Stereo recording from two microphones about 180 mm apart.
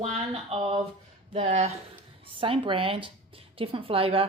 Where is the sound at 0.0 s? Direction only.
35° right (ahead or behind).